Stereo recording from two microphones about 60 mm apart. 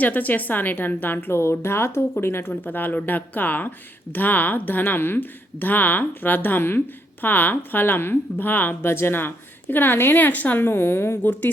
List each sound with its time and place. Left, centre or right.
0.0 s a woman's voice: left
1.4 s a woman's voice: left
2.6 s a woman's voice: left
10.7 s a woman's voice: left